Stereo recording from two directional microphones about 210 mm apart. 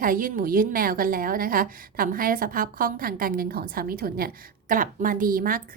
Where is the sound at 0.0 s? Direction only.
40° right (ahead or behind).